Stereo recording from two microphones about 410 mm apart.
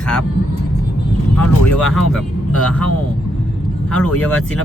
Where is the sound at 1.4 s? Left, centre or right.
Centre.